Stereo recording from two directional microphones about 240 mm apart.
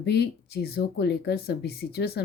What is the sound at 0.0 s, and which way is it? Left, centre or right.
Speech, left.